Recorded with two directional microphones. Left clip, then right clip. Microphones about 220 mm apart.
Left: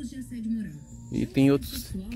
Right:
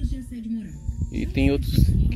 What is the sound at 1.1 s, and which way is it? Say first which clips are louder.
Speech: left 1 dB; 20° left (ahead or behind).